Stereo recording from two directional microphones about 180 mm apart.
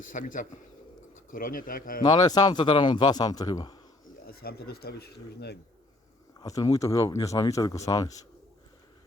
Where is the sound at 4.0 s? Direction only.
60° left (ahead or behind).